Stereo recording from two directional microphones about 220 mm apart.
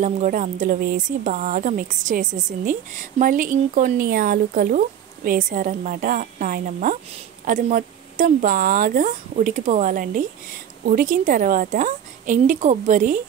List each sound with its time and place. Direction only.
0.0 s speech: 35° right (ahead or behind)